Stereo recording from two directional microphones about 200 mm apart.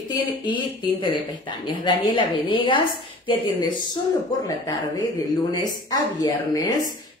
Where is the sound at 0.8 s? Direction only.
25° left (ahead or behind).